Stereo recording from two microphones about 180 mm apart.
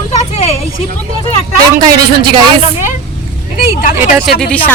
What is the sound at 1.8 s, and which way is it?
Speech, 25° right (ahead or behind).